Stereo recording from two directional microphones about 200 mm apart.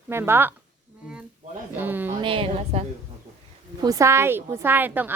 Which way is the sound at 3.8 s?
15° right (ahead or behind).